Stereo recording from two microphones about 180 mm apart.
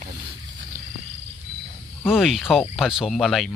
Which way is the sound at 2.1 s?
Centre (ahead or behind).